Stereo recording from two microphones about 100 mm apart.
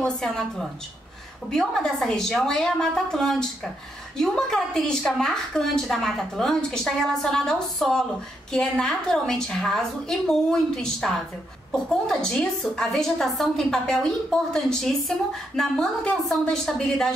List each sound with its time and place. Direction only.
0.0 s a woman's voice: 5° left (ahead or behind)